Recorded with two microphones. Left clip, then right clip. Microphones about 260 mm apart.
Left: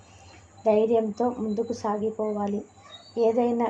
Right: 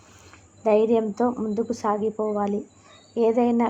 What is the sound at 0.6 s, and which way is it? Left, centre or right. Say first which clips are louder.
A woman's voice: right 2 dB; centre.